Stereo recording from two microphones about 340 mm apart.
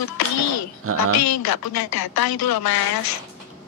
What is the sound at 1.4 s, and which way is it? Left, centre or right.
A woman's voice, left.